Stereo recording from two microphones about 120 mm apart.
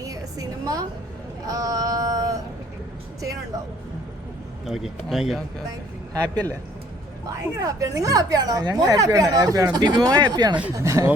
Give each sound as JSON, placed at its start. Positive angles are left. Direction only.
{"t": 0.0, "sound": "a sound", "side_deg": -30}
{"t": 4.6, "sound": "speech", "side_deg": 0}
{"t": 6.3, "sound": "speech", "side_deg": -35}